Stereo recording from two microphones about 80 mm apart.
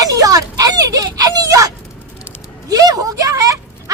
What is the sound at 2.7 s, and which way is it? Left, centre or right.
A woman's voice, right.